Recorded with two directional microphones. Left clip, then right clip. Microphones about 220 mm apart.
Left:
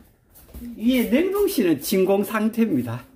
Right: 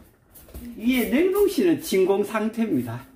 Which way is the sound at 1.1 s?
45° left (ahead or behind).